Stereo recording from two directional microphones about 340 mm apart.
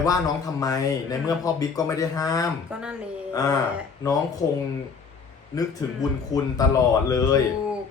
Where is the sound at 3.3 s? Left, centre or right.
Centre.